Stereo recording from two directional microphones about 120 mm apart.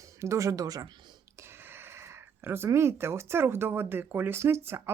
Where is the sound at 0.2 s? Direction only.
25° right (ahead or behind).